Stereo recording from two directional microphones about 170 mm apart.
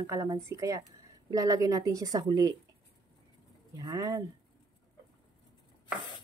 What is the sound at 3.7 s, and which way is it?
Speech, 20° right (ahead or behind).